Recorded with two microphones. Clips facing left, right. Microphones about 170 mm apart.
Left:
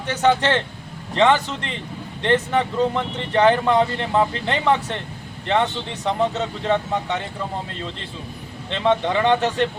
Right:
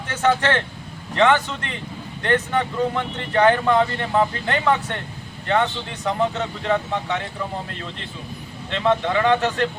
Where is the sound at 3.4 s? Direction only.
20° left (ahead or behind).